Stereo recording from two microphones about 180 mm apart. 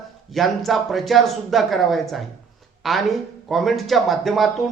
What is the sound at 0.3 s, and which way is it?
A man's voice, centre (ahead or behind).